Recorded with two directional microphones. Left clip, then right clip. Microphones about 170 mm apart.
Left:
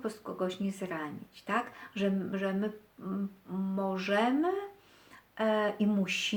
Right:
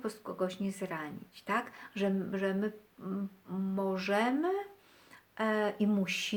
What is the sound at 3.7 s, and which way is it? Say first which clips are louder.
Speech: left 1 dB; 30° right (ahead or behind).